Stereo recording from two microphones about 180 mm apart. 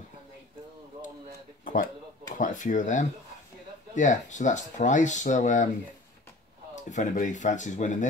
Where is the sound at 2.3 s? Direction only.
45° left (ahead or behind).